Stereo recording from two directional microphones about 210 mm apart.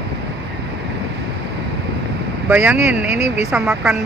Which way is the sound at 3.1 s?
30° left (ahead or behind).